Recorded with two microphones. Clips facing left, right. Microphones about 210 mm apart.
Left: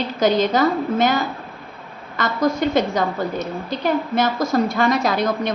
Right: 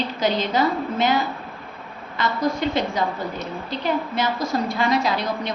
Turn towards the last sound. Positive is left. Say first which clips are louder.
# left 4 dB
turn(degrees=45)  # may be behind; listen again after turning